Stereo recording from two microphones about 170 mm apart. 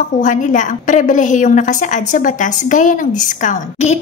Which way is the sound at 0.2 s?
50° left (ahead or behind).